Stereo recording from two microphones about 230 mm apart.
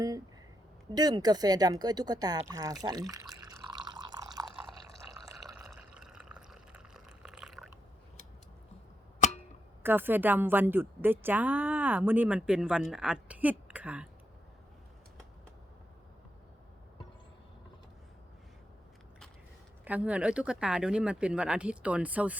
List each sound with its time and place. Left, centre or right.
0.9 s speech: centre
5.2 s drip: centre
9.2 s clock: left
9.8 s a woman's voice: centre
19.8 s speech: centre